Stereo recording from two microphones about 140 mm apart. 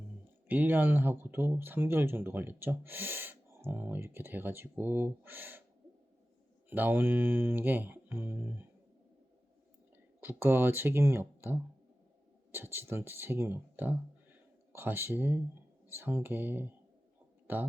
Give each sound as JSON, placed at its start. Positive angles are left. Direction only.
{"t": 0.4, "sound": "speech", "side_deg": -15}
{"t": 6.7, "sound": "speech", "side_deg": -15}
{"t": 10.2, "sound": "speech", "side_deg": -15}
{"t": 17.4, "sound": "a sound", "side_deg": -10}